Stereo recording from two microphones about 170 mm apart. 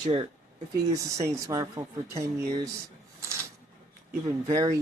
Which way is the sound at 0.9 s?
20° right (ahead or behind).